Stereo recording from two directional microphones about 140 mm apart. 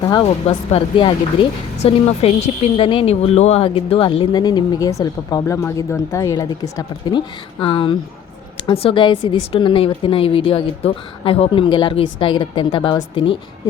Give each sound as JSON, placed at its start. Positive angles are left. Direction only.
{"t": 0.1, "sound": "speech", "side_deg": 40}
{"t": 1.8, "sound": "a woman's voice", "side_deg": 45}